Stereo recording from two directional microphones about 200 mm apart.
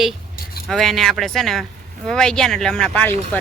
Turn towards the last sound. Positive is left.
turn(degrees=5)  # may be behind; listen again after turning